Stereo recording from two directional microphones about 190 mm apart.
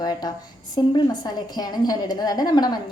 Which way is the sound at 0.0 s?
20° left (ahead or behind).